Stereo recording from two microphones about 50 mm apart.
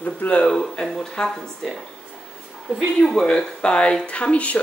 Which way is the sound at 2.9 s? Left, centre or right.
Centre.